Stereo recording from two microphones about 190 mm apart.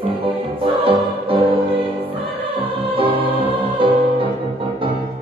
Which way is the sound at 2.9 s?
30° right (ahead or behind).